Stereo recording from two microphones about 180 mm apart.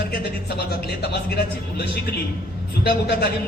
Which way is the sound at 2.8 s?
60° left (ahead or behind).